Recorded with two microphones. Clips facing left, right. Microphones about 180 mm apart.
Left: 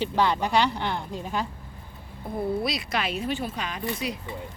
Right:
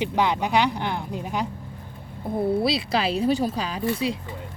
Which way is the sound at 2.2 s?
30° right (ahead or behind).